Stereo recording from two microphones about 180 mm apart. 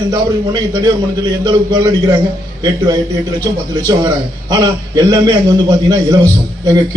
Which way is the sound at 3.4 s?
20° right (ahead or behind).